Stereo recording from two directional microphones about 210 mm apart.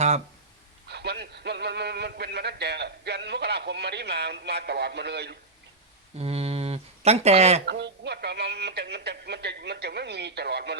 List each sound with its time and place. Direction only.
0.9 s speech: 50° right (ahead or behind)
6.1 s speech: 30° right (ahead or behind)
7.6 s speech: 55° right (ahead or behind)